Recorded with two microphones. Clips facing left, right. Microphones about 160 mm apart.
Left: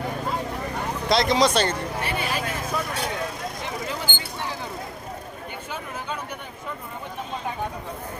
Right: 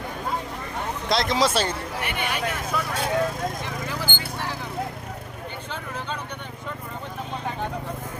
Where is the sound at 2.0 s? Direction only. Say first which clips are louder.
Left 1 dB; 30° left (ahead or behind).